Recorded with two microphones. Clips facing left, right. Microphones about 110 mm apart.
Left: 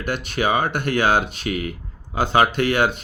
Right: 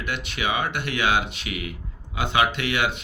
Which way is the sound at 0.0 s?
40° left (ahead or behind).